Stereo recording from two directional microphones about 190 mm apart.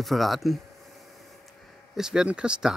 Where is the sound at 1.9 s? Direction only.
5° right (ahead or behind).